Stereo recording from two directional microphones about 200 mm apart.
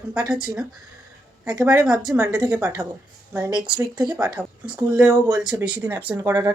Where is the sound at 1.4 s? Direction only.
15° right (ahead or behind).